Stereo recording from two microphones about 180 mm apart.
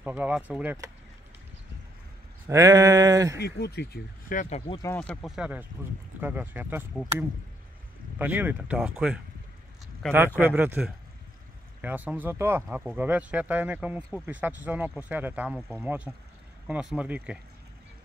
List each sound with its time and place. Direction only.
0.0 s speech: 10° right (ahead or behind)
2.4 s a sound: 20° right (ahead or behind)
3.3 s speech: 65° left (ahead or behind); by 4.7 s 40° left (ahead or behind)
4.9 s speech: 5° left (ahead or behind); by 6.9 s 10° right (ahead or behind)
8.2 s speech: 10° right (ahead or behind)
10.4 s speech: 10° right (ahead or behind)